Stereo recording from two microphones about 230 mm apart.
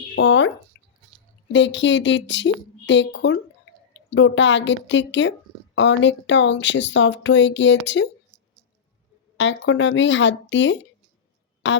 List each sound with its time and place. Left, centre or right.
0.2 s speech: left
0.7 s drip: left
1.5 s speech: left
9.4 s speech: left